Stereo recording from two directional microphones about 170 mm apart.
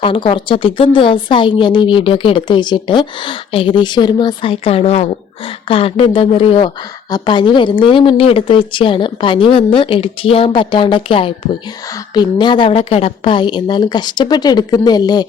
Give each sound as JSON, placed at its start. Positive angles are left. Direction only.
{"t": 0.0, "sound": "a woman's voice", "side_deg": 30}